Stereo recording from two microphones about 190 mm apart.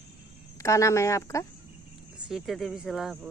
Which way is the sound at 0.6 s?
15° left (ahead or behind).